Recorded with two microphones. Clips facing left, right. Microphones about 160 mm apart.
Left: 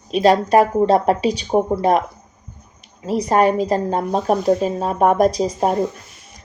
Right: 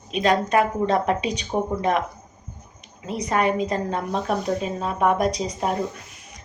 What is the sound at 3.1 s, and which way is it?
A woman's voice, 35° left (ahead or behind).